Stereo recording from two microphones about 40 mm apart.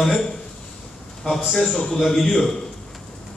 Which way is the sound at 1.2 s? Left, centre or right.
Centre.